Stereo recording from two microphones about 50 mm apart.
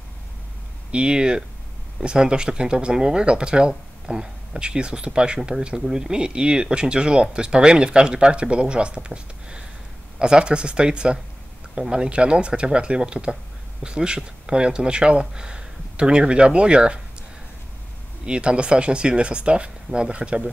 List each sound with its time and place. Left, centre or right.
0.9 s speech: centre
18.2 s speech: centre